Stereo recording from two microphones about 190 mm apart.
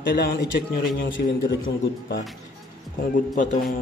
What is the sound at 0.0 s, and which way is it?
Speech, 65° left (ahead or behind).